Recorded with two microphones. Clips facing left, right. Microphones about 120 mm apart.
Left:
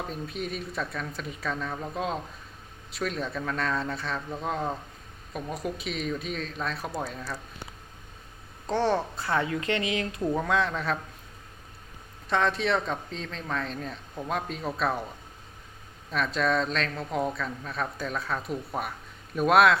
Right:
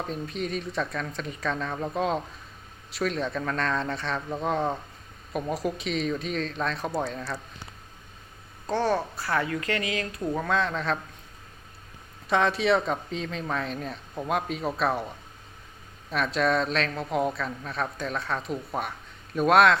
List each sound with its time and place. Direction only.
0.1 s speech: 5° left (ahead or behind)
8.9 s speech: 20° left (ahead or behind)
10.2 s speech: 5° left (ahead or behind)
12.3 s speech: 5° right (ahead or behind)
16.1 s speech: centre (ahead or behind)